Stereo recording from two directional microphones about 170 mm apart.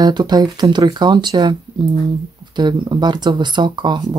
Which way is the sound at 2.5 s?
25° right (ahead or behind).